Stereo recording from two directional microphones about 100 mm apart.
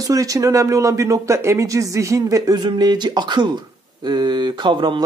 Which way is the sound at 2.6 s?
45° right (ahead or behind).